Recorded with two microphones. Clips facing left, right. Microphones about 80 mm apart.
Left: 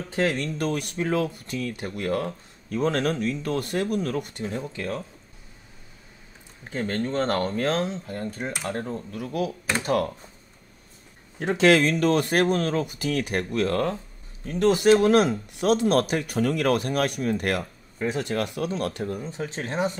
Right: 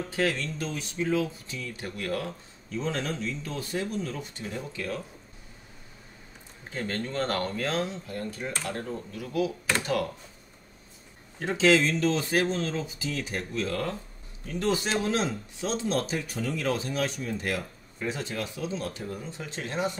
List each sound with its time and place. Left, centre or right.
0.3 s speech: left
1.8 s speech: left
2.7 s speech: left
4.4 s speech: left
6.7 s speech: left
9.1 s speech: left
11.5 s speech: left
19.2 s speech: left